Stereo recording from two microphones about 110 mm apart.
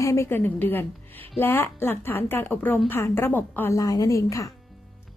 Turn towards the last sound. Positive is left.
turn(degrees=30)  # may be behind; listen again after turning